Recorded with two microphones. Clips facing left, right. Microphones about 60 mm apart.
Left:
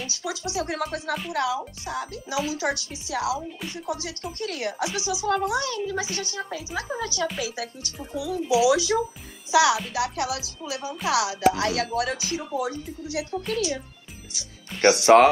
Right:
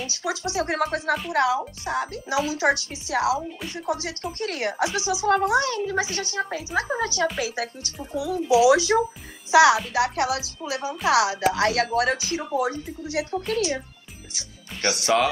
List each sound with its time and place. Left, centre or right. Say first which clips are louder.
0.1 s speech: right 4 dB; right
14.8 s speech: left 7 dB; left